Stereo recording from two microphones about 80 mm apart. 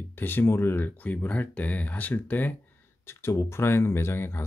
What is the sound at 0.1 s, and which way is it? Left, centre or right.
Speech, left.